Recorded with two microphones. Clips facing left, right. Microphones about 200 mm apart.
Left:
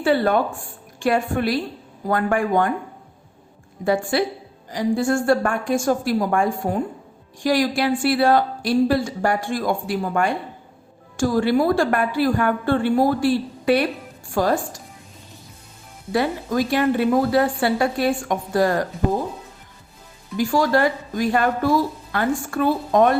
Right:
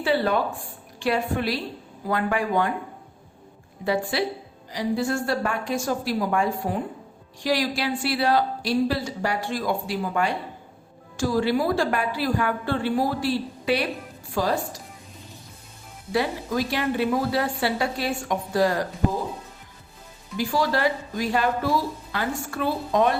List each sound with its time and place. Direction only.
0.0 s a woman's voice: 50° left (ahead or behind)
3.8 s a woman's voice: 50° left (ahead or behind)
16.1 s a woman's voice: 50° left (ahead or behind)
20.3 s a woman's voice: 45° left (ahead or behind)